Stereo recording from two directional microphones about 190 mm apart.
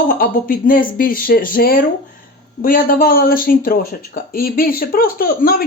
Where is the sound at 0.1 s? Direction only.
50° left (ahead or behind).